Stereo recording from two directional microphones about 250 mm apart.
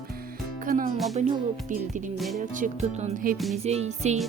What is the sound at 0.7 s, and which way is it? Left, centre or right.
Music, right.